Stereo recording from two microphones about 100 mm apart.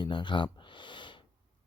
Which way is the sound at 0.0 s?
55° left (ahead or behind).